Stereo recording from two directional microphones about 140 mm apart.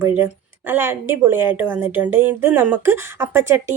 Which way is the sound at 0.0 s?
15° right (ahead or behind).